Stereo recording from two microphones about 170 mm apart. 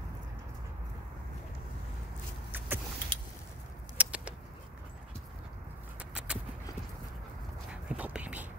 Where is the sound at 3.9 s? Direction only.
5° right (ahead or behind).